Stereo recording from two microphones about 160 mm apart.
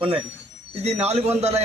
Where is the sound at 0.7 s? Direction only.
40° right (ahead or behind).